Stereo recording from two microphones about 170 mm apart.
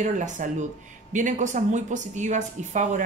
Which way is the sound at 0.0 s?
45° right (ahead or behind).